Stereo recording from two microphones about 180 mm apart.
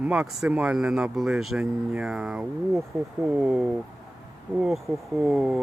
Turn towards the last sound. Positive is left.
turn(degrees=0)  # may be behind; listen again after turning